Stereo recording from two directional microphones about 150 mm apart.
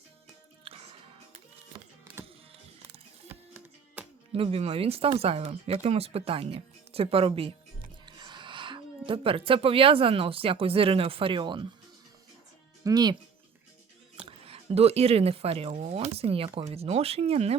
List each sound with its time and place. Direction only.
0.6 s music: 40° right (ahead or behind)
3.2 s music: 15° right (ahead or behind)
4.3 s speech: 40° right (ahead or behind)
12.8 s speech: 25° right (ahead or behind)
14.3 s speech: 40° right (ahead or behind)